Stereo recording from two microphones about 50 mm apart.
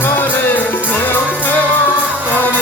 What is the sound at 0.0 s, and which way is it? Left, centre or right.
Music, left.